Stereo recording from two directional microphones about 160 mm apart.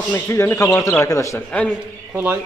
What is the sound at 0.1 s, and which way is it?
A man's voice, 15° left (ahead or behind).